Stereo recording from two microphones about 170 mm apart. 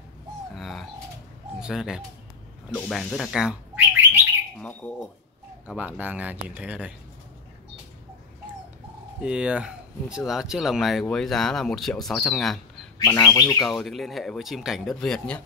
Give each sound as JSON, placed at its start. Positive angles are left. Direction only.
{"t": 0.6, "sound": "bird", "side_deg": 0}
{"t": 1.6, "sound": "speech", "side_deg": -5}
{"t": 4.6, "sound": "speech", "side_deg": 10}
{"t": 5.7, "sound": "speech", "side_deg": -10}
{"t": 9.2, "sound": "speech", "side_deg": -5}
{"t": 13.0, "sound": "speech", "side_deg": 20}
{"t": 13.7, "sound": "speech", "side_deg": 0}